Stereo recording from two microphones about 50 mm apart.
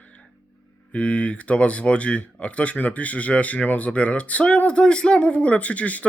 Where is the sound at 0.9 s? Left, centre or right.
Left.